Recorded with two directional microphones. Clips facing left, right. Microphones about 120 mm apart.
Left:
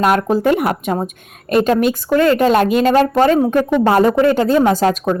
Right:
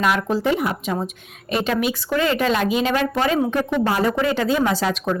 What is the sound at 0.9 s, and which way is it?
A woman's voice, 50° left (ahead or behind).